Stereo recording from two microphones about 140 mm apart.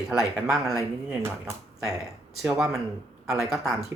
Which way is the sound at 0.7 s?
15° right (ahead or behind).